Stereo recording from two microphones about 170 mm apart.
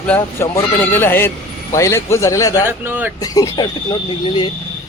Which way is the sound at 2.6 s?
10° right (ahead or behind).